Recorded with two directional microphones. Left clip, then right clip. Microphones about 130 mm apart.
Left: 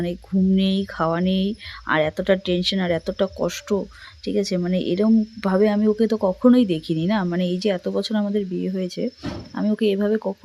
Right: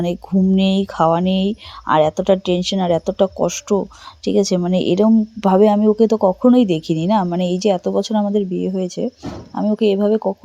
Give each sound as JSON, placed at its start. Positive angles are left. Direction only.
{"t": 0.0, "sound": "speech", "side_deg": -20}
{"t": 4.3, "sound": "a woman's voice", "side_deg": -25}